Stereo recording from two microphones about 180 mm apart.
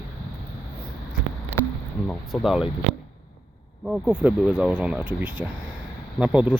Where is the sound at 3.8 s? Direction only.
5° right (ahead or behind).